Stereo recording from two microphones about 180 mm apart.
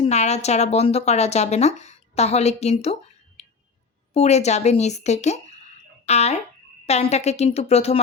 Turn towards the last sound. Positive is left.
turn(degrees=35)  # may be behind; listen again after turning